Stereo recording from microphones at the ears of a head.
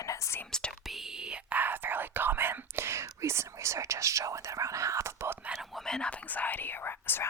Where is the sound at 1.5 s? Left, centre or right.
Right.